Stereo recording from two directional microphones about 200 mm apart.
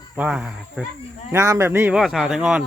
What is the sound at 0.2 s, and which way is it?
Speech, 5° right (ahead or behind).